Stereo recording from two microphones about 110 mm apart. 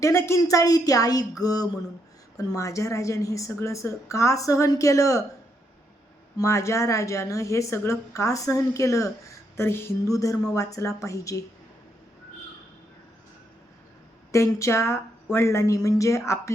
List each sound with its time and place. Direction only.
0.0 s a woman's voice: 25° left (ahead or behind)
6.3 s a woman's voice: 25° left (ahead or behind)
14.3 s a woman's voice: 25° left (ahead or behind)